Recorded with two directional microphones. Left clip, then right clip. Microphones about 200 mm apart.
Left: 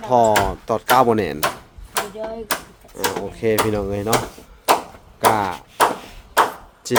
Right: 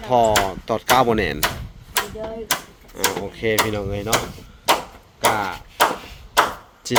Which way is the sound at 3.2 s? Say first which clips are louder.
Left 3 dB; 10° left (ahead or behind).